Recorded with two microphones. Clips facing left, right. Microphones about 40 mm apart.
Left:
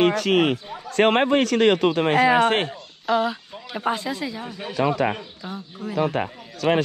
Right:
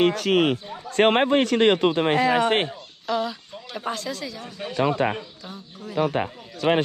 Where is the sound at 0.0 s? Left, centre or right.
Left.